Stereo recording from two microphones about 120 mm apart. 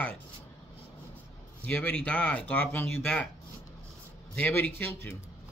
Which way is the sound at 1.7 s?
10° left (ahead or behind).